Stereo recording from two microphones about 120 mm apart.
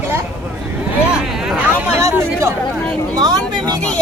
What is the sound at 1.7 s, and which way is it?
Chatter, 20° right (ahead or behind).